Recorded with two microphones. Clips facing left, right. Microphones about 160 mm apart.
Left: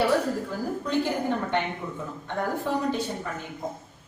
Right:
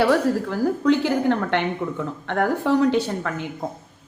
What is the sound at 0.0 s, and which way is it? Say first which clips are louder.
A woman's voice: right 5 dB; 75° right (ahead or behind).